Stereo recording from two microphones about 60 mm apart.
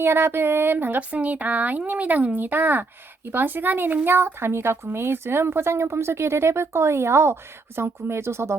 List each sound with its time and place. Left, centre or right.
0.0 s a woman's voice: right